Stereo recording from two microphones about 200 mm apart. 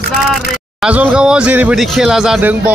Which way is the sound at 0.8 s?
5° right (ahead or behind).